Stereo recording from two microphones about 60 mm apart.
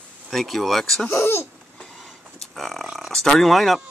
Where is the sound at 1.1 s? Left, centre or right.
Left.